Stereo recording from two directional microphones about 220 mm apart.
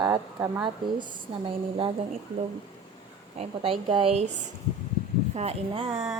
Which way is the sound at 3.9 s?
25° right (ahead or behind).